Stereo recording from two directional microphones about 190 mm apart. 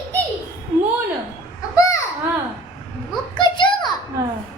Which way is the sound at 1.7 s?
15° left (ahead or behind).